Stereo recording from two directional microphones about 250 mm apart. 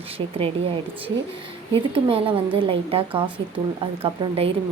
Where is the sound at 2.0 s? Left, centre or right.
Right.